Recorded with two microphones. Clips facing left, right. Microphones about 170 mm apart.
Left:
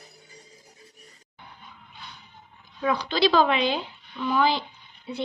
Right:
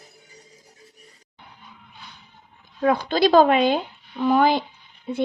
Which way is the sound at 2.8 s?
50° right (ahead or behind).